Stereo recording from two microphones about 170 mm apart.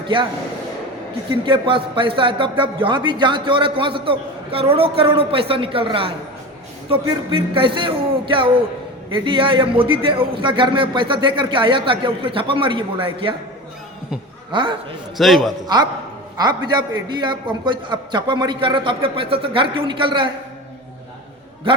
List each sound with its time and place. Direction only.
1.5 s a man's voice: 30° right (ahead or behind)
14.5 s a man's voice: 30° right (ahead or behind)
15.2 s a man's voice: centre (ahead or behind)
15.6 s a man's voice: 25° right (ahead or behind)